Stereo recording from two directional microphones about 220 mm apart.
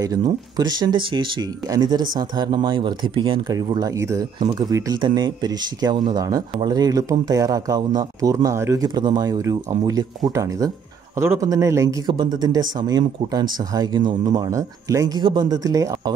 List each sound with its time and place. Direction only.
0.0 s a man's voice: 15° right (ahead or behind)